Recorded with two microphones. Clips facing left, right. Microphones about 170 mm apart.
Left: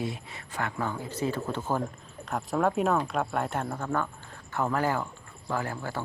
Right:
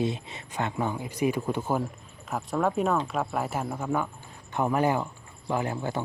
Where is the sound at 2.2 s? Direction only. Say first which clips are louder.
Even; centre (ahead or behind).